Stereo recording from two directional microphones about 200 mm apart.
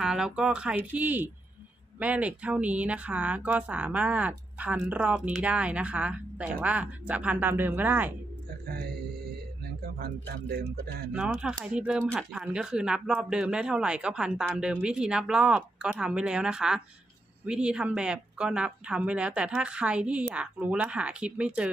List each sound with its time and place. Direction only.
0.0 s speech: 5° right (ahead or behind)
8.6 s speech: 50° right (ahead or behind)
9.9 s speech: 50° right (ahead or behind)
11.1 s speech: 5° right (ahead or behind)